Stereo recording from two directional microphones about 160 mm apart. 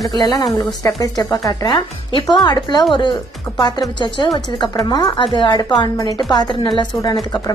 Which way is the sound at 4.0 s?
30° left (ahead or behind).